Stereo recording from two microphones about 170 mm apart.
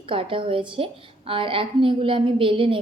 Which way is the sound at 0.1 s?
30° right (ahead or behind).